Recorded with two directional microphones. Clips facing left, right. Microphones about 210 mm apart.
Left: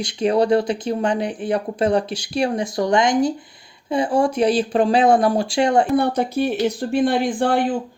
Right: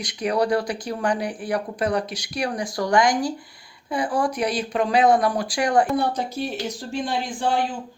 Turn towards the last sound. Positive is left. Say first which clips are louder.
# left 5 dB
turn(degrees=55)  # may be behind; listen again after turning